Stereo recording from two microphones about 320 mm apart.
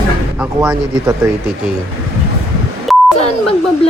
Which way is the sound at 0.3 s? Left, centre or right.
Centre.